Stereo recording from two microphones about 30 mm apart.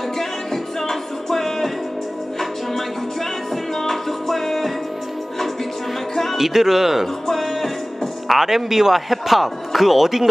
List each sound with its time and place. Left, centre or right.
0.2 s music: centre
3.7 s music: centre
6.3 s a man's voice: centre
7.2 s music: centre
8.3 s a man's voice: centre